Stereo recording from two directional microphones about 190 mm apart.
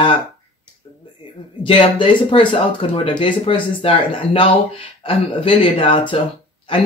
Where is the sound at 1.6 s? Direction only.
25° left (ahead or behind).